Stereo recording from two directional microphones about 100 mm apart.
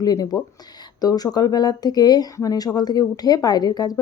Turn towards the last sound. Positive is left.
turn(degrees=40)  # may be behind; listen again after turning